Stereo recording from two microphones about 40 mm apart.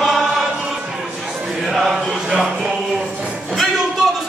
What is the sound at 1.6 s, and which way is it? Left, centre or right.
Chant, centre.